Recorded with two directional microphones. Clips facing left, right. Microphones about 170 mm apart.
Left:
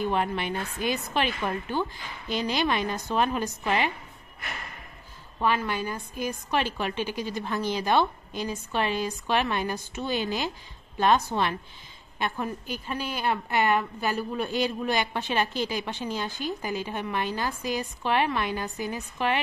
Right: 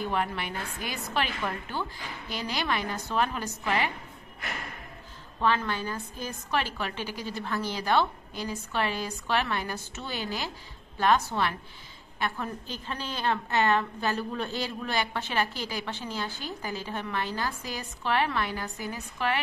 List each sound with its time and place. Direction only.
0.0 s a woman's voice: 20° left (ahead or behind)
5.4 s a woman's voice: 10° left (ahead or behind)